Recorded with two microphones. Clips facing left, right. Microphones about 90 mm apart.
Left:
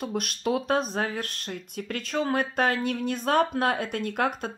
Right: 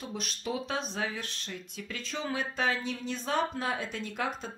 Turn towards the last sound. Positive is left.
turn(degrees=60)  # may be behind; listen again after turning